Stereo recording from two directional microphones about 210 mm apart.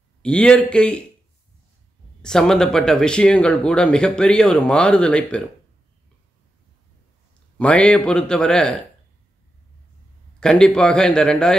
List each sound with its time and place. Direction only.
0.2 s speech: 5° left (ahead or behind)
2.2 s speech: centre (ahead or behind)
7.5 s speech: 5° left (ahead or behind)
10.4 s speech: 5° left (ahead or behind)